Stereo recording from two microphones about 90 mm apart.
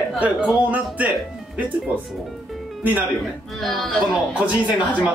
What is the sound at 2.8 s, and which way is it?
Speech, 20° right (ahead or behind).